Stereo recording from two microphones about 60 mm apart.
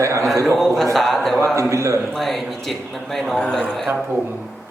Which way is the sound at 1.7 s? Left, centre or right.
Right.